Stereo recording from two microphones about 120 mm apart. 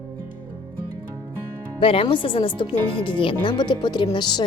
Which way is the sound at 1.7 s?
50° left (ahead or behind).